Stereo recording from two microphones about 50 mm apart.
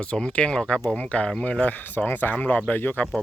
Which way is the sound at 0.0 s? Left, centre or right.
Left.